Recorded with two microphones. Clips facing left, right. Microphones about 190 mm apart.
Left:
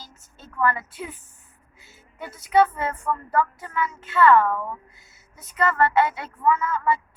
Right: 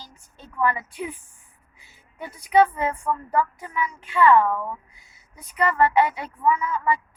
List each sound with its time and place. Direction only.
0.6 s speech: 15° right (ahead or behind)